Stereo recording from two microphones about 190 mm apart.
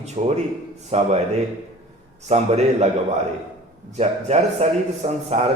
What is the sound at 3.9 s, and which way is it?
A man's voice, 35° right (ahead or behind).